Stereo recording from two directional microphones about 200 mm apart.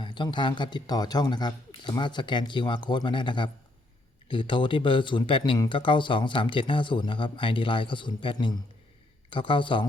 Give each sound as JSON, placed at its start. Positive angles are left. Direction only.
{"t": 0.0, "sound": "speech", "side_deg": 25}